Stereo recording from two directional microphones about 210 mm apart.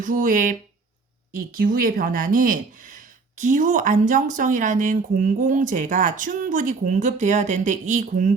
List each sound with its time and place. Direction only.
0.0 s speech: 40° right (ahead or behind)